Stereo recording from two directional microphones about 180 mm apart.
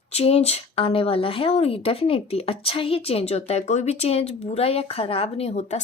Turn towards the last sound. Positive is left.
turn(degrees=35)  # may be behind; listen again after turning